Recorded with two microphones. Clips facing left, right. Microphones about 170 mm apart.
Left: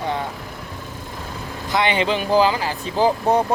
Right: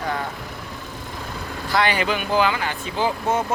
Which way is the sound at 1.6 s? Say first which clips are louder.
Left 1 dB; 20° left (ahead or behind).